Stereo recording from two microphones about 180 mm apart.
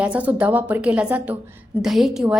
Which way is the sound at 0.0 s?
5° right (ahead or behind).